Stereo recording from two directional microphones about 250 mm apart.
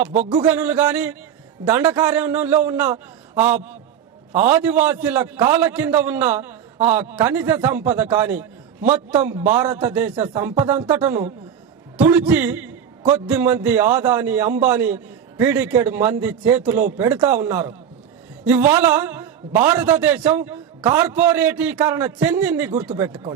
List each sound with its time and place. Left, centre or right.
0.0 s a man's voice: centre
8.4 s a sound: right
9.1 s a man's voice: centre